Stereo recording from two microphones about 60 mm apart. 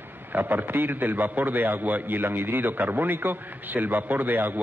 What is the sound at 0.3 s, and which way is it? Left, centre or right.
A man's voice, right.